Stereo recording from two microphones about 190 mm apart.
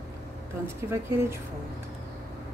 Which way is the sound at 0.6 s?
15° right (ahead or behind).